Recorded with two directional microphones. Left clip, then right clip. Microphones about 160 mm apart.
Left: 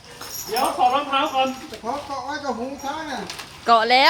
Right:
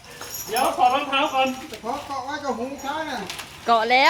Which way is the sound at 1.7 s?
10° left (ahead or behind).